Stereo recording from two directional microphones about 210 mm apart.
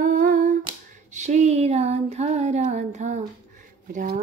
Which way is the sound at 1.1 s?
35° right (ahead or behind).